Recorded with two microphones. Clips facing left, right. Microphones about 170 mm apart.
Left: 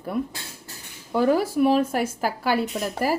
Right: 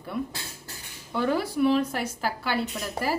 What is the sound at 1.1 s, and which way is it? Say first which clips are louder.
A woman's voice: left 5 dB; 40° left (ahead or behind).